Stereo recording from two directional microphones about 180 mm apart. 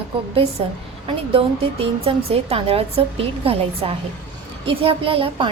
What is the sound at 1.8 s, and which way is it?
A woman's voice, 30° right (ahead or behind).